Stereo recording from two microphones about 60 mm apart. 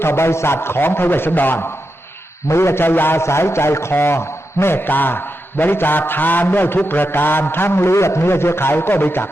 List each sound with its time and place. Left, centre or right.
0.0 s a man's voice: left
2.5 s a man's voice: left